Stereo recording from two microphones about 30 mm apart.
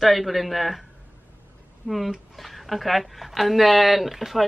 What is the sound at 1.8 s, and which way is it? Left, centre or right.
Speech, centre.